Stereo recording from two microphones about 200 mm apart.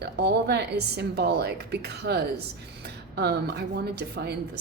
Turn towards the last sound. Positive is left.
turn(degrees=-55)  # may be behind; listen again after turning